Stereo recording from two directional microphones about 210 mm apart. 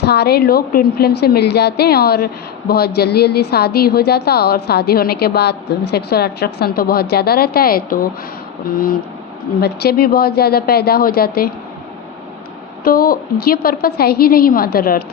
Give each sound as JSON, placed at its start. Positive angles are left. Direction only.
{"t": 0.0, "sound": "a woman's voice", "side_deg": 50}
{"t": 9.6, "sound": "a woman's voice", "side_deg": 50}
{"t": 12.8, "sound": "a woman's voice", "side_deg": 45}